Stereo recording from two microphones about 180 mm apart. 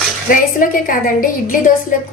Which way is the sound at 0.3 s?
50° left (ahead or behind).